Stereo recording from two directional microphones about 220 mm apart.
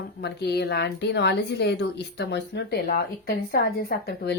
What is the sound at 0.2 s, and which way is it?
Speech, 50° left (ahead or behind).